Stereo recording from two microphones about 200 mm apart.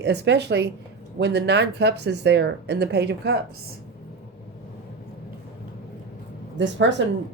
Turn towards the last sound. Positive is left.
turn(degrees=-70)  # may be behind; listen again after turning